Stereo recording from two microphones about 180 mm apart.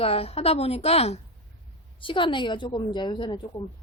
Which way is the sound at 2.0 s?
30° left (ahead or behind).